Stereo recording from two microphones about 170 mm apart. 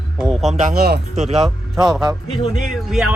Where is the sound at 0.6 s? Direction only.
60° right (ahead or behind).